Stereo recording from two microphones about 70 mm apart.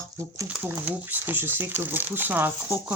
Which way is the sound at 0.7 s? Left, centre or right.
Right.